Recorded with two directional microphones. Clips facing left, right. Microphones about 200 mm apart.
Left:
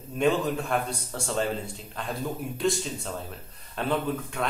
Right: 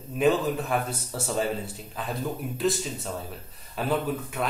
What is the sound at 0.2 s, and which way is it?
A man's voice, 5° right (ahead or behind).